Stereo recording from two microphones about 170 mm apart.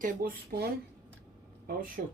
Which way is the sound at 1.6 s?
55° right (ahead or behind).